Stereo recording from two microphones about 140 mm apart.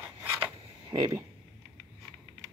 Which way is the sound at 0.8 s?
30° right (ahead or behind).